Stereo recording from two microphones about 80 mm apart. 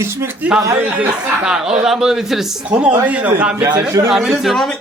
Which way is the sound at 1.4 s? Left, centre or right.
Centre.